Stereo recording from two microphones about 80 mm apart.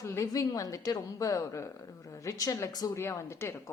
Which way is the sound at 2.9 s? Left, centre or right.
Left.